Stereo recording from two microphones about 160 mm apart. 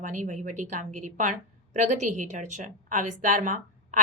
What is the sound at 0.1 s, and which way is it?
Speech, 50° right (ahead or behind).